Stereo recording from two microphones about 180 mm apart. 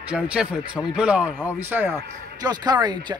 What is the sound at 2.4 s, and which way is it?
Speech, 25° right (ahead or behind).